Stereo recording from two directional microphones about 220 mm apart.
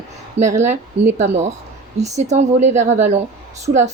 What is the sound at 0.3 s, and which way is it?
A woman's voice, 30° right (ahead or behind).